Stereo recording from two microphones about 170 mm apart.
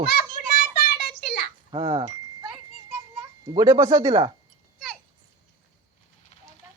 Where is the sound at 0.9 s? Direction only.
70° left (ahead or behind).